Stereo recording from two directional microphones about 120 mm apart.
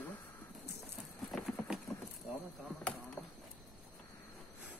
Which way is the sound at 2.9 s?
10° left (ahead or behind).